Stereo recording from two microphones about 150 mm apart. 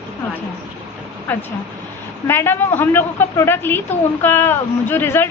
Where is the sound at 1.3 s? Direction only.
10° left (ahead or behind).